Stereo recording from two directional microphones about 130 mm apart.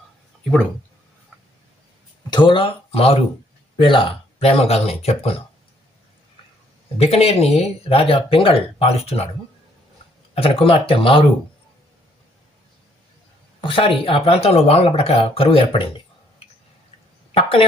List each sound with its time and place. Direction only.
2.3 s speech: 40° left (ahead or behind)
7.0 s speech: 50° left (ahead or behind)
10.3 s speech: 45° left (ahead or behind)
13.6 s speech: 45° left (ahead or behind)
17.3 s a sound: 45° left (ahead or behind)